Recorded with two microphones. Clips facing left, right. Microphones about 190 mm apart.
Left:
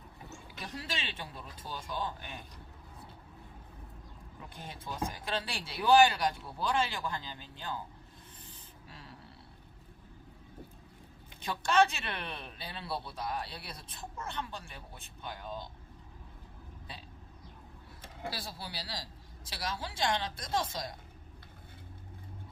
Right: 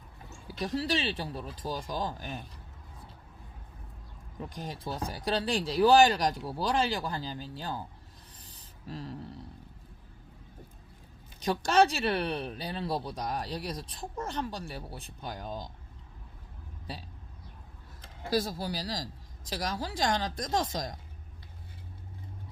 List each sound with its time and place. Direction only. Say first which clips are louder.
0.4 s speech: right 12 dB; 35° right (ahead or behind)
4.4 s speech: right 8 dB; 40° right (ahead or behind)
8.4 s a sound: right 8 dB; 40° right (ahead or behind)
11.3 s speech: right 3 dB; 40° right (ahead or behind)
18.3 s speech: right 12 dB; 45° right (ahead or behind)